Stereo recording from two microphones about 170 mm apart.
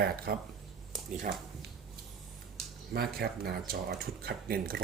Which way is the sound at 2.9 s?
65° right (ahead or behind).